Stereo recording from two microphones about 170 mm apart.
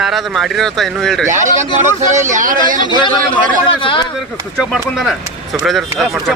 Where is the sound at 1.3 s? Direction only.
45° right (ahead or behind).